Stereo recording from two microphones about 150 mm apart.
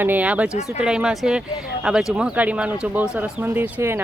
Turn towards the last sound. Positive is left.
turn(degrees=-15)  # may be behind; listen again after turning